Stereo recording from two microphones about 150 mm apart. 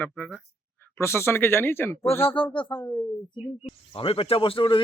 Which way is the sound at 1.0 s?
15° left (ahead or behind).